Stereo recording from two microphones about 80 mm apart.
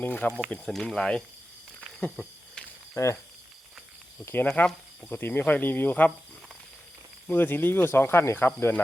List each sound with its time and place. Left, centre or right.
0.0 s speech: left
0.5 s speech: centre
2.0 s a sound: centre
2.9 s cricket: left
4.4 s speech: centre
7.3 s speech: left